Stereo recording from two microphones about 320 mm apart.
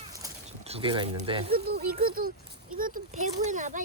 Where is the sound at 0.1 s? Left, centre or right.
Centre.